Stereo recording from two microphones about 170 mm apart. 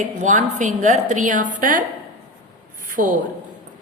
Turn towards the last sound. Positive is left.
turn(degrees=-55)  # may be behind; listen again after turning